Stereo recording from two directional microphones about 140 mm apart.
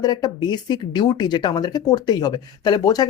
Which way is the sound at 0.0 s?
30° left (ahead or behind).